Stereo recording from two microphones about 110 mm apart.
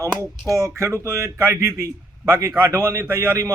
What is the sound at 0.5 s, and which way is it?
A man's voice, 25° right (ahead or behind).